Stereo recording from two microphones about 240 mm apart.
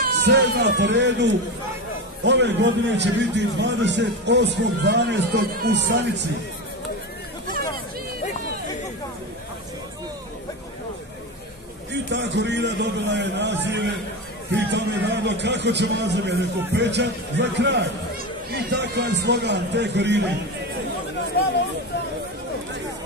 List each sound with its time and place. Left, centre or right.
0.0 s a man's voice: right
11.9 s a man's voice: right